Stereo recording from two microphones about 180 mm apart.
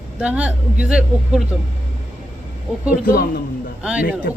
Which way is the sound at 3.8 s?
5° right (ahead or behind).